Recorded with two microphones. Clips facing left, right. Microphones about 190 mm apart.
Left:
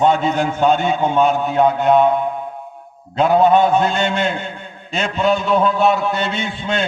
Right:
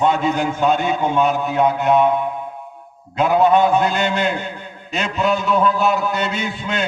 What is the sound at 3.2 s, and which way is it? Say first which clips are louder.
A man's voice: left 2 dB; 25° left (ahead or behind).